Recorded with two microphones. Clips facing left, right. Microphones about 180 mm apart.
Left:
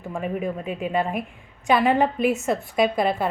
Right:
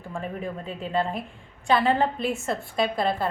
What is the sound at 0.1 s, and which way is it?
A woman's voice, 15° left (ahead or behind).